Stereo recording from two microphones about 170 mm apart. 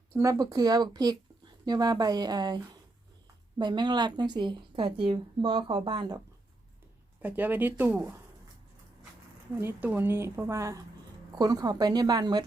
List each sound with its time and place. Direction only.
0.2 s a woman's voice: 20° right (ahead or behind)
3.6 s a woman's voice: 25° right (ahead or behind)
7.2 s a woman's voice: 10° right (ahead or behind)
9.6 s a woman's voice: 10° right (ahead or behind)